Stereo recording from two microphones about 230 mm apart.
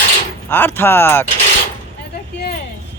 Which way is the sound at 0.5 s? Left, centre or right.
Centre.